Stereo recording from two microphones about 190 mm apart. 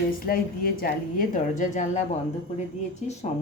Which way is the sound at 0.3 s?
50° left (ahead or behind).